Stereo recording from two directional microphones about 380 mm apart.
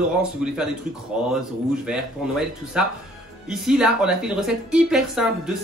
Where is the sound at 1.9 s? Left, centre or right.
Centre.